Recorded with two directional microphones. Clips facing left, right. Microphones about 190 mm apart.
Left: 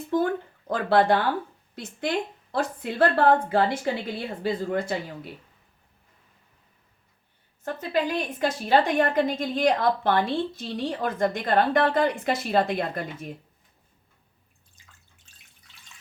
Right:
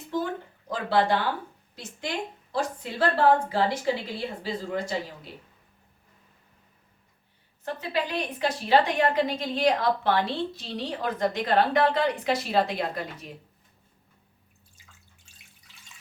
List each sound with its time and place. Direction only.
0.1 s a woman's voice: 55° left (ahead or behind)
7.6 s a woman's voice: 45° left (ahead or behind)